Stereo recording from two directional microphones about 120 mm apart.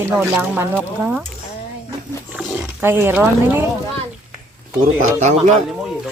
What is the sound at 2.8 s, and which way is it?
Speech, 20° right (ahead or behind).